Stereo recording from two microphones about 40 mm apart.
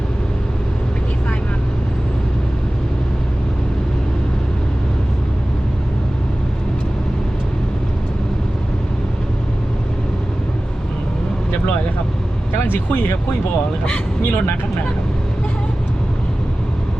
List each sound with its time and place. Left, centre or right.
12.6 s speech: left